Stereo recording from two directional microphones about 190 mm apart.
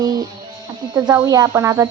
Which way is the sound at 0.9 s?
20° right (ahead or behind).